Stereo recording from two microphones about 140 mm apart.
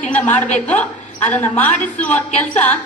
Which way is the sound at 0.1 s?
10° left (ahead or behind).